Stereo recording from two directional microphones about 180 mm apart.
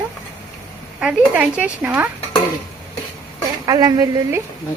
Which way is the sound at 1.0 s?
5° right (ahead or behind).